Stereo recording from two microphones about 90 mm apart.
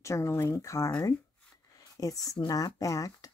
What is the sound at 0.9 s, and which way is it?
Speech, 45° left (ahead or behind).